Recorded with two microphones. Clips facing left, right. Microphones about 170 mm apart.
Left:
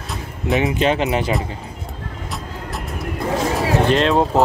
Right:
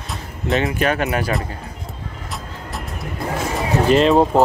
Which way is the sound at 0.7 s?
20° left (ahead or behind).